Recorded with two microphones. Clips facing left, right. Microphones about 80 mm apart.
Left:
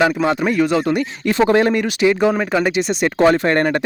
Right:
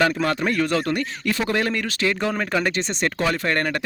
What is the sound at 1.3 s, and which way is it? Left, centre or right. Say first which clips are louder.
Speech: left 9 dB; left.